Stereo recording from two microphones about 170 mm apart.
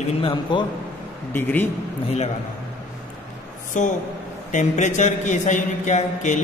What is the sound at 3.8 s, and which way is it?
A man's voice, 45° left (ahead or behind).